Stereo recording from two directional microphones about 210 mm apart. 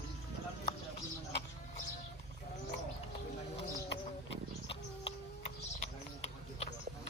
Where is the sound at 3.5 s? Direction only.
25° left (ahead or behind).